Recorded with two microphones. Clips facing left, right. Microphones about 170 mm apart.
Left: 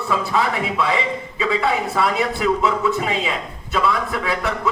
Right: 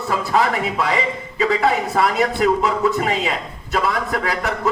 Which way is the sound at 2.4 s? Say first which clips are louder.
Right 2 dB; 40° right (ahead or behind).